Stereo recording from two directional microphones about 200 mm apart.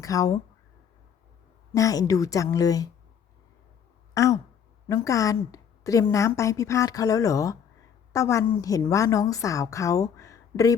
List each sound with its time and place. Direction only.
0.0 s a woman's voice: 15° left (ahead or behind)
1.7 s a woman's voice: 15° left (ahead or behind)
4.1 s a woman's voice: 15° left (ahead or behind)